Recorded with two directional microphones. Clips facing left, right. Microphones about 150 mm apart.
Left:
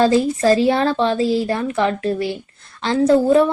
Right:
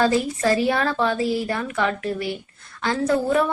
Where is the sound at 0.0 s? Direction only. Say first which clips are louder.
Left 5 dB; 25° left (ahead or behind).